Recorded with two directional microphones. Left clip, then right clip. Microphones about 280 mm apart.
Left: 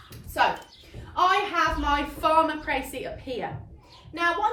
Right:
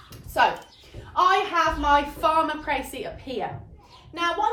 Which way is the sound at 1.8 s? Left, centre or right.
Centre.